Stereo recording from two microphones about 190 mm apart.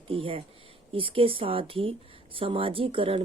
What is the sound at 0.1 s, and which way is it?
Speech, 30° right (ahead or behind).